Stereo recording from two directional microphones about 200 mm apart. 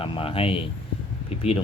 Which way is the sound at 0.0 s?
30° left (ahead or behind).